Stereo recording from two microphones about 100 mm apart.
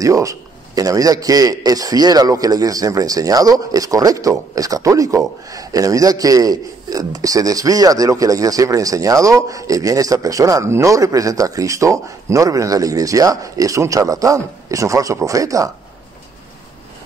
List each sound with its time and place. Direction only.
0.0 s a man's voice: 35° right (ahead or behind)